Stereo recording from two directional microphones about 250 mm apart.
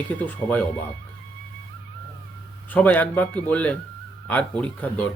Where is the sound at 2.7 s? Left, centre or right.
Centre.